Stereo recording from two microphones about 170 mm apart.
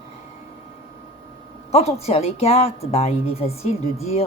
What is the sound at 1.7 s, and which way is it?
A woman's voice, 40° left (ahead or behind).